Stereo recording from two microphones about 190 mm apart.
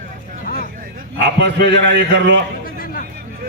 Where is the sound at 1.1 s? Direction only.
65° right (ahead or behind).